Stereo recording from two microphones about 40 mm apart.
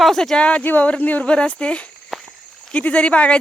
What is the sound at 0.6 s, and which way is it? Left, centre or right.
Speech, left.